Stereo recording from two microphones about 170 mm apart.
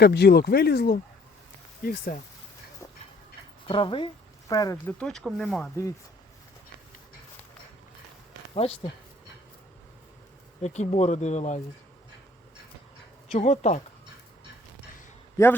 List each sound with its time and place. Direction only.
0.0 s speech: 75° left (ahead or behind)
1.8 s speech: 55° left (ahead or behind)
3.7 s speech: 30° left (ahead or behind)
4.9 s speech: 5° left (ahead or behind)
8.5 s speech: 35° left (ahead or behind)
10.6 s speech: 40° left (ahead or behind)
13.3 s speech: 40° left (ahead or behind)
15.4 s a man's voice: 15° left (ahead or behind)